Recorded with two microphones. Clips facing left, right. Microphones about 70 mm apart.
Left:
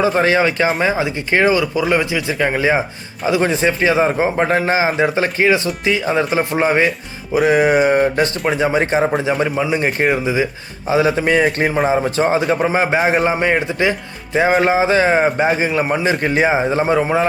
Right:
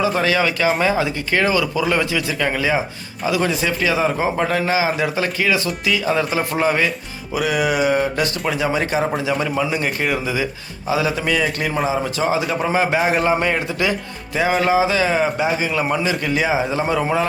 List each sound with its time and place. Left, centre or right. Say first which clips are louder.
0.0 s a man's voice: left 4 dB; left